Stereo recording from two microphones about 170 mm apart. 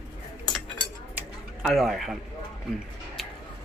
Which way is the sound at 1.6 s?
Centre (ahead or behind).